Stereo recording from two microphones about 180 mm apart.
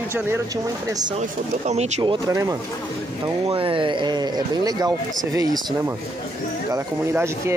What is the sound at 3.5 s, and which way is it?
Speech, 30° right (ahead or behind).